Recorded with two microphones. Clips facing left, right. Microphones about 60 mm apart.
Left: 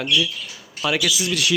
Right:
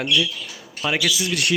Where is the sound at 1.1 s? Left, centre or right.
Right.